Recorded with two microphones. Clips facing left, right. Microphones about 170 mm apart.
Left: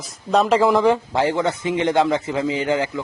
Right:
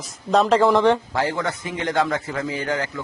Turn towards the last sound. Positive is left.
turn(degrees=15)  # may be behind; listen again after turning